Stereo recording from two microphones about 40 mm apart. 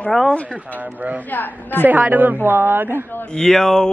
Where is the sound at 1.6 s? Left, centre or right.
Left.